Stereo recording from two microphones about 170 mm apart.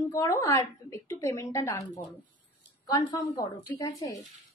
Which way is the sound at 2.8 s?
25° left (ahead or behind).